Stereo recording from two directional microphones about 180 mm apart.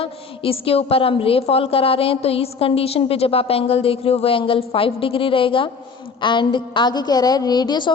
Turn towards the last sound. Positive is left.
turn(degrees=25)  # may be behind; listen again after turning